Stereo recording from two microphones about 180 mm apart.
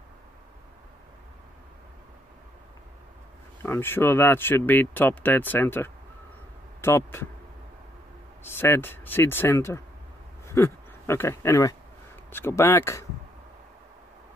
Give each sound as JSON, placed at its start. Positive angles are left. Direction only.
{"t": 3.6, "sound": "speech", "side_deg": 10}
{"t": 8.5, "sound": "speech", "side_deg": 10}